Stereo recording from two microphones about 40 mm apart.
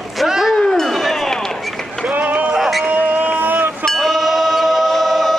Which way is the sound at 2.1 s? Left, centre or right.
Right.